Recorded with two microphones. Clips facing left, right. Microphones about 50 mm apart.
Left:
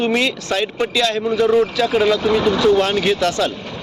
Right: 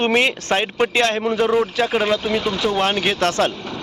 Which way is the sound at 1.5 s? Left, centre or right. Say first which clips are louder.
Left 3 dB; right.